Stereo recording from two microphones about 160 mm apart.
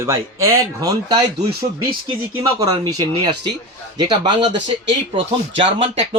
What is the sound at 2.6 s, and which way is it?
Speech, 20° right (ahead or behind).